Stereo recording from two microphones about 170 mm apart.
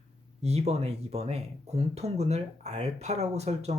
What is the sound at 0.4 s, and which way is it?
Speech, 40° right (ahead or behind).